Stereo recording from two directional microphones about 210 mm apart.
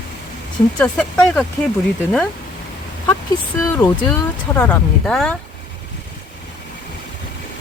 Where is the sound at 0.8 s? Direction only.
5° left (ahead or behind).